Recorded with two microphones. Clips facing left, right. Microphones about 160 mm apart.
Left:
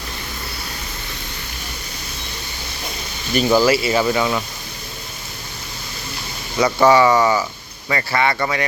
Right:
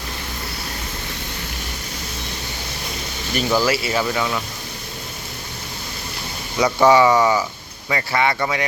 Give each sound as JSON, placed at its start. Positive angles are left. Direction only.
{"t": 3.3, "sound": "speech", "side_deg": 0}
{"t": 6.6, "sound": "speech", "side_deg": 0}
{"t": 6.8, "sound": "speech", "side_deg": -15}
{"t": 7.1, "sound": "speech", "side_deg": 0}